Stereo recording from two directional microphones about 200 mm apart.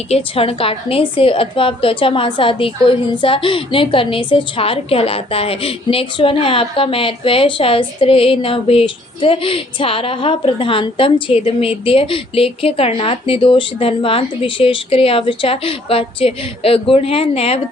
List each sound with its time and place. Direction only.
0.1 s a woman's voice: 30° left (ahead or behind)